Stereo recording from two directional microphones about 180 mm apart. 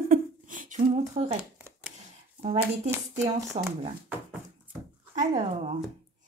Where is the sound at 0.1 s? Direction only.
50° right (ahead or behind).